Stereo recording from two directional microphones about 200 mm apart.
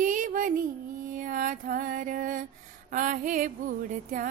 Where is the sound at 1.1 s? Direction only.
40° right (ahead or behind).